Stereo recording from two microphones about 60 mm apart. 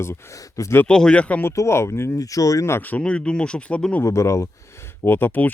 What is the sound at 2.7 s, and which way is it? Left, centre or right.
Speech, left.